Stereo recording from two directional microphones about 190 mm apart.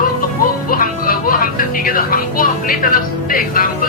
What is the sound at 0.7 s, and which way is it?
Speech, 50° left (ahead or behind).